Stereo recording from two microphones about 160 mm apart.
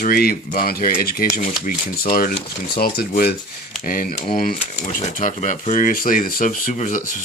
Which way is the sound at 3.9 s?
60° left (ahead or behind).